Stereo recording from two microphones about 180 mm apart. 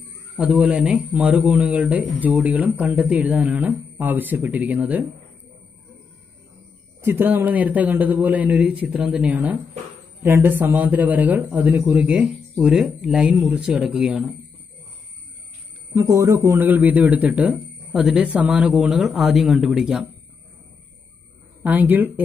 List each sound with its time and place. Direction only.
0.4 s speech: 5° right (ahead or behind)
7.0 s speech: 10° right (ahead or behind)
15.9 s speech: 15° right (ahead or behind)
21.6 s speech: 10° right (ahead or behind)